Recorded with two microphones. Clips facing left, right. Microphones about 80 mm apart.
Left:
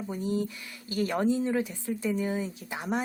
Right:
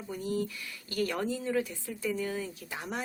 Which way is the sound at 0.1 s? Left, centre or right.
Left.